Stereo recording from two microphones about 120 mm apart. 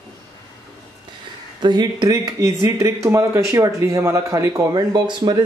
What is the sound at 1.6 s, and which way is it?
Speech, 35° right (ahead or behind).